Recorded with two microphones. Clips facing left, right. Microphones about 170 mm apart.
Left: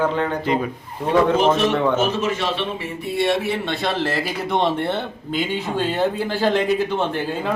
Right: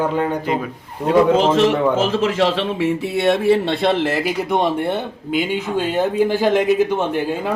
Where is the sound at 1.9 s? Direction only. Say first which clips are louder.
Right 3 dB; 90° right.